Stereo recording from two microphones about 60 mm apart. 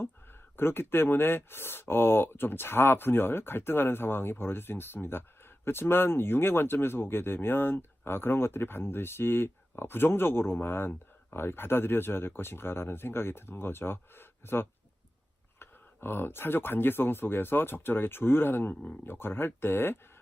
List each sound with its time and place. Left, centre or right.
0.5 s speech: left
18.7 s speech: centre
19.0 s speech: left